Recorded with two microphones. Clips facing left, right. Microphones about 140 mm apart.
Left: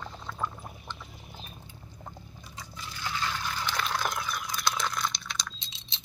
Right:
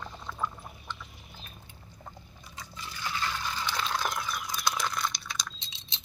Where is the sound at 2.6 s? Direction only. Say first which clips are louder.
Even; 5° left (ahead or behind).